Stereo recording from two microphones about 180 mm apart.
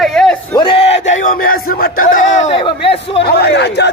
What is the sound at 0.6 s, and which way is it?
Crowd, 30° left (ahead or behind).